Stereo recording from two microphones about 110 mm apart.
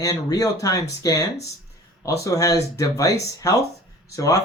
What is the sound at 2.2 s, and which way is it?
Speech, 30° left (ahead or behind).